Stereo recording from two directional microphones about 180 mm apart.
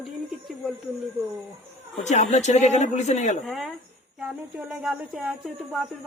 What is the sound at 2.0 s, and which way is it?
A man's voice, 40° left (ahead or behind).